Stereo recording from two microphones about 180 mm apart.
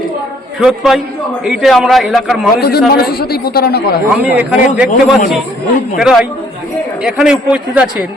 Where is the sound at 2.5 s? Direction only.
60° left (ahead or behind).